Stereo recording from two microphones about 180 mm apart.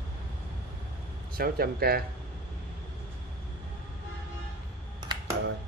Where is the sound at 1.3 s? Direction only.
55° right (ahead or behind).